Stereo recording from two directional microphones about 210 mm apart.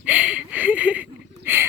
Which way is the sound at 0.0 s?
5° right (ahead or behind).